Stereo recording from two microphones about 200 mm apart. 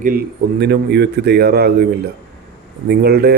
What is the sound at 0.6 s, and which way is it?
A man's voice, 55° right (ahead or behind).